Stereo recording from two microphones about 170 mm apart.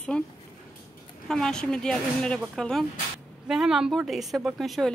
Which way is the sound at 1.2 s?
5° left (ahead or behind).